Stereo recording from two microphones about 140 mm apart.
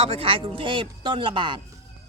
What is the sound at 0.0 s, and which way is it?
Speech, 40° right (ahead or behind).